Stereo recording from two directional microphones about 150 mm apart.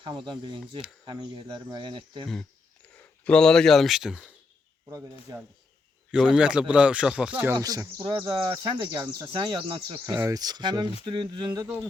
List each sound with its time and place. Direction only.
0.3 s speech: 30° right (ahead or behind)
2.2 s speech: 5° left (ahead or behind)
4.9 s speech: 20° right (ahead or behind)
6.1 s speech: 5° right (ahead or behind); by 8.5 s 30° right (ahead or behind)
8.9 s speech: 20° right (ahead or behind)
9.3 s speech: 30° right (ahead or behind)
11.5 s speech: 20° right (ahead or behind)